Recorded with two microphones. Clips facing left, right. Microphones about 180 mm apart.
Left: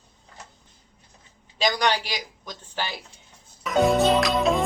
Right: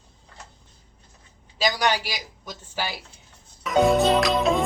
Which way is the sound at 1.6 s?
5° right (ahead or behind).